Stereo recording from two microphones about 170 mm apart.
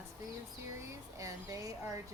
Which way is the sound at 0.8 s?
20° right (ahead or behind).